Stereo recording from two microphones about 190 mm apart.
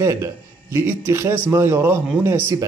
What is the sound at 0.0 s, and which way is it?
Speech, 15° right (ahead or behind).